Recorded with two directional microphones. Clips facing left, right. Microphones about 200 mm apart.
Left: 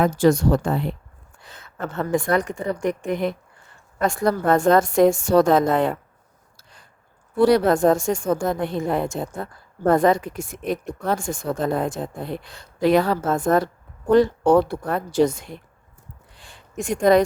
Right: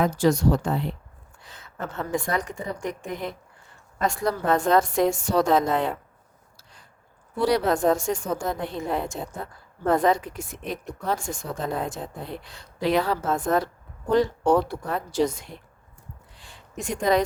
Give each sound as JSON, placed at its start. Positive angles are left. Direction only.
{"t": 0.0, "sound": "a woman's voice", "side_deg": 55}
{"t": 4.0, "sound": "a woman's voice", "side_deg": 55}
{"t": 7.3, "sound": "a woman's voice", "side_deg": 50}
{"t": 16.4, "sound": "a sound", "side_deg": 50}